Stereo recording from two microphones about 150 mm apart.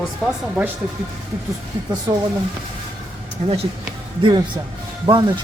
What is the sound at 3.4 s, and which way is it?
Speech, 45° right (ahead or behind).